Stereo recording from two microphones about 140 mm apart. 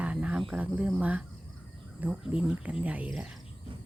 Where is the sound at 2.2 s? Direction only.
5° right (ahead or behind).